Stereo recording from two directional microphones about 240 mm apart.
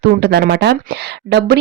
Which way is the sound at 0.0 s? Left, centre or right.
Right.